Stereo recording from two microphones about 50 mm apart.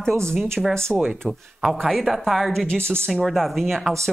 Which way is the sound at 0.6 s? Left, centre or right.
Centre.